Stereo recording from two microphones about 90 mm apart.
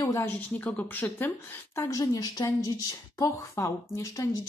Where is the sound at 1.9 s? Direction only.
40° left (ahead or behind).